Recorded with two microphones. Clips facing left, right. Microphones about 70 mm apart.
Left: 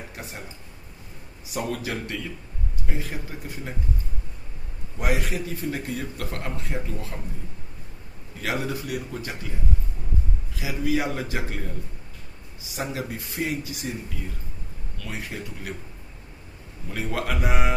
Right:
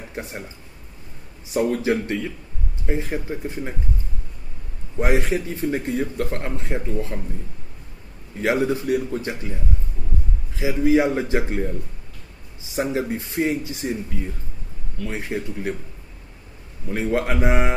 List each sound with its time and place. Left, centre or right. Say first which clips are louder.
0.2 s speech: right 9 dB; right
1.5 s speech: right 9 dB; right
4.9 s speech: right 6 dB; right
8.4 s speech: right 8 dB; right
10.5 s speech: right 8 dB; right
12.7 s speech: right 7 dB; right
15.0 s speech: right 7 dB; right
16.9 s speech: right 6 dB; right